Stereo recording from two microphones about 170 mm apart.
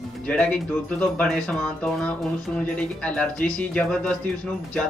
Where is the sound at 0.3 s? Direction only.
5° left (ahead or behind).